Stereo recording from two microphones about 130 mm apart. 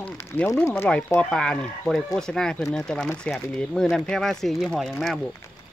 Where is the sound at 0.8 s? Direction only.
10° left (ahead or behind).